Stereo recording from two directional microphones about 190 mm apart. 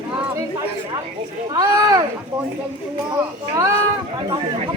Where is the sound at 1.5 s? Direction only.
20° right (ahead or behind).